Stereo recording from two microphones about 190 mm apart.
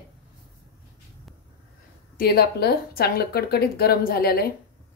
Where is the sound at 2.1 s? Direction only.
55° left (ahead or behind).